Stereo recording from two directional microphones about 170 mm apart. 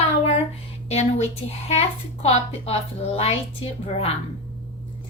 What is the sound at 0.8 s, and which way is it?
A woman's voice, 40° left (ahead or behind).